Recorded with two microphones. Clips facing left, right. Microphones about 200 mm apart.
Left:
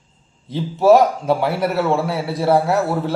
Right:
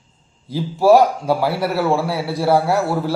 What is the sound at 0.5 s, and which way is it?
A man's voice, centre (ahead or behind).